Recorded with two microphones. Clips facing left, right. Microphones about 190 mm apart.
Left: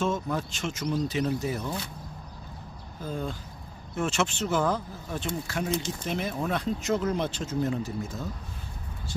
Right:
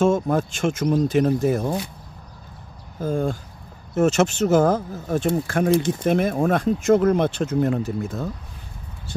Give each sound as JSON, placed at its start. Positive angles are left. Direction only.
{"t": 0.0, "sound": "speech", "side_deg": -50}
{"t": 3.0, "sound": "speech", "side_deg": -50}